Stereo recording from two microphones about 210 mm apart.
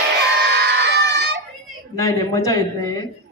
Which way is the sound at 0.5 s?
50° right (ahead or behind).